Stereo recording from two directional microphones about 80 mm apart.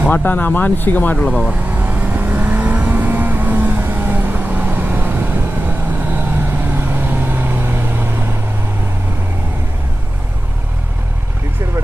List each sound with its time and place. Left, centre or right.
0.1 s speech: left
1.3 s speech: centre
1.7 s vehicle: centre